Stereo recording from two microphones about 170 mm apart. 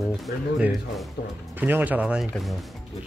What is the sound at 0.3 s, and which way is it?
Speech, 60° left (ahead or behind).